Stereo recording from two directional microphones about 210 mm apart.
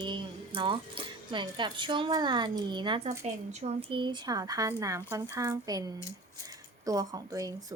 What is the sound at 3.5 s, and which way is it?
A woman's voice, 30° right (ahead or behind).